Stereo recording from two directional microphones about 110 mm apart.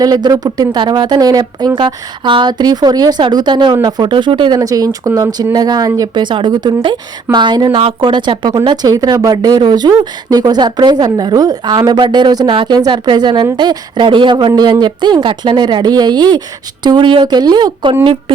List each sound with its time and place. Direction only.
0.0 s a woman's voice: 35° right (ahead or behind)
4.6 s speech: 35° right (ahead or behind)
7.8 s a woman's voice: 50° right (ahead or behind)